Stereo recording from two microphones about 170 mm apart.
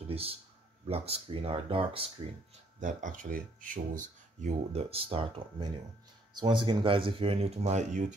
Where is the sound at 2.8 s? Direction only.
50° right (ahead or behind).